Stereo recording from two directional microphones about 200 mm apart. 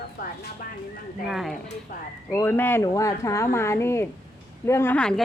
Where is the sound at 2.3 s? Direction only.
10° left (ahead or behind).